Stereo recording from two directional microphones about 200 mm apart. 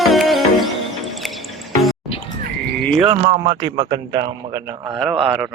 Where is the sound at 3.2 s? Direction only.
30° right (ahead or behind).